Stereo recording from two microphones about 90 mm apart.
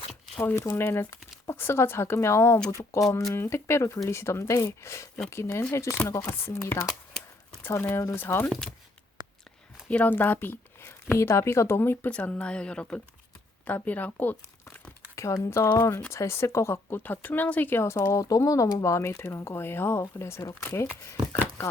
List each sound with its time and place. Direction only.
0.4 s speech: 30° left (ahead or behind)
7.6 s speech: 25° left (ahead or behind)
8.4 s speech: 5° left (ahead or behind)
9.2 s whispering: 55° right (ahead or behind)
9.9 s speech: 20° left (ahead or behind)
15.1 s speech: 35° left (ahead or behind)